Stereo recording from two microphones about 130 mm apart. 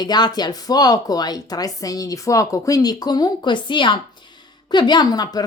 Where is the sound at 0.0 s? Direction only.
35° left (ahead or behind).